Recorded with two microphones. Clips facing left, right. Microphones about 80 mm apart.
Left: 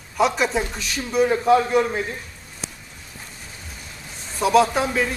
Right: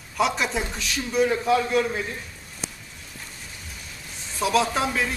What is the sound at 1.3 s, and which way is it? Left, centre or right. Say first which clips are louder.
Speech: left 8 dB; left.